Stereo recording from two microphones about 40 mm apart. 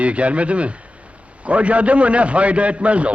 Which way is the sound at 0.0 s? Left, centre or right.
Right.